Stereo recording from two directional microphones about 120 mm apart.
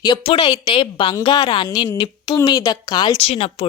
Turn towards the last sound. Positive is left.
turn(degrees=60)  # may be behind; listen again after turning